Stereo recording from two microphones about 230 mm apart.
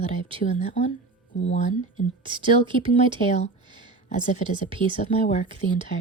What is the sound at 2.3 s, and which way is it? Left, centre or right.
Speech, right.